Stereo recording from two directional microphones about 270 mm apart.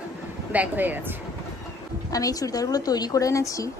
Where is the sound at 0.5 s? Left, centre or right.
Centre.